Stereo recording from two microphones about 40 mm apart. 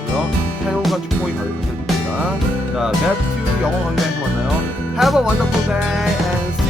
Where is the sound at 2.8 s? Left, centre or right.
Centre.